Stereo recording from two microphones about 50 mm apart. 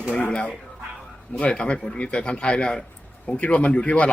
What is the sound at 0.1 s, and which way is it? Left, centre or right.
A man's voice, left.